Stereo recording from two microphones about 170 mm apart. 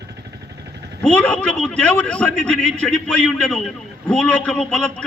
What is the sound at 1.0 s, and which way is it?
A man's voice, 5° left (ahead or behind).